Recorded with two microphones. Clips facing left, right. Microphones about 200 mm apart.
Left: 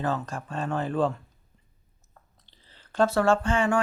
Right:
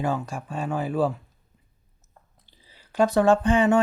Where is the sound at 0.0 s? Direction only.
10° right (ahead or behind).